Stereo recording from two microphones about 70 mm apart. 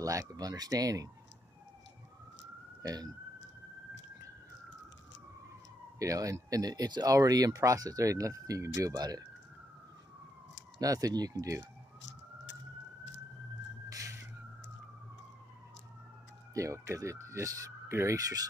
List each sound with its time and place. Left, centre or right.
0.0 s speech: right
2.8 s speech: right
5.9 s speech: right
7.1 s speech: right
10.8 s speech: right
13.8 s a sound: right
16.5 s speech: right